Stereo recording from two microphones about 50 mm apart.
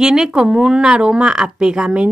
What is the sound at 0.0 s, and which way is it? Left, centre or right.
Speech, centre.